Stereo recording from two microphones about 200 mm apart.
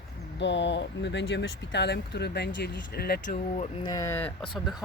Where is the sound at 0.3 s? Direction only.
65° left (ahead or behind).